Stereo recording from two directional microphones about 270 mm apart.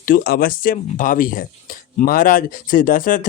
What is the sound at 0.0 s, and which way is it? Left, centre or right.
Speech, left.